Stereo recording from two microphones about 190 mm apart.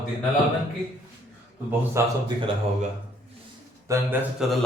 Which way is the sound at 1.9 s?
25° right (ahead or behind).